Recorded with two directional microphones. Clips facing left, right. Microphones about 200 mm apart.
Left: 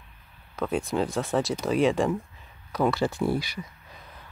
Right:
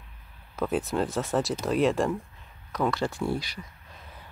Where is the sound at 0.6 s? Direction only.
5° right (ahead or behind).